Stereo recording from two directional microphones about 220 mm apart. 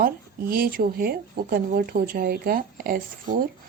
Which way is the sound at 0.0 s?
40° right (ahead or behind).